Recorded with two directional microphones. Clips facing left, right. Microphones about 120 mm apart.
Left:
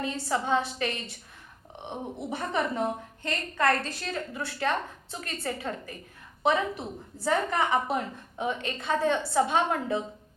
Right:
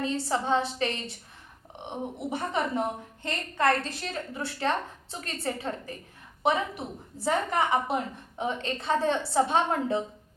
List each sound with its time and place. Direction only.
0.0 s a woman's voice: 25° right (ahead or behind)
2.1 s a woman's voice: 20° right (ahead or behind)